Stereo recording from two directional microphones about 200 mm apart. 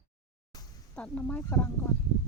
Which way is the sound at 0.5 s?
20° left (ahead or behind).